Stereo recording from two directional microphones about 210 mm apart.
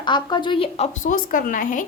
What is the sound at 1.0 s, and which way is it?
Speech, 40° left (ahead or behind).